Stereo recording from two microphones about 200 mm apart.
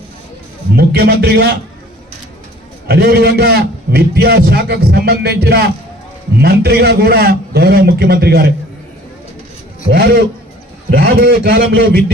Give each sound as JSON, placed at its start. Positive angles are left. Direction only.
{"t": 0.8, "sound": "a man's voice", "side_deg": -50}
{"t": 2.8, "sound": "a man's voice", "side_deg": -55}
{"t": 9.9, "sound": "a man's voice", "side_deg": -55}